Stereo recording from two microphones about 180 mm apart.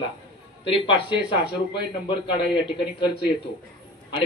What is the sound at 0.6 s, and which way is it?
A man's voice, 30° left (ahead or behind).